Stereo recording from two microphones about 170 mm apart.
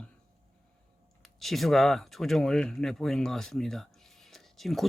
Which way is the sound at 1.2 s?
Centre (ahead or behind).